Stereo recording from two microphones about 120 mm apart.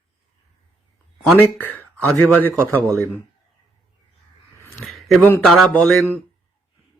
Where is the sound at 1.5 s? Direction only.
15° left (ahead or behind).